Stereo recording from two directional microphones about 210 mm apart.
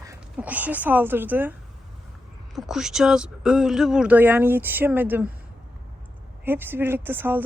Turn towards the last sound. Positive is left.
turn(degrees=-10)  # may be behind; listen again after turning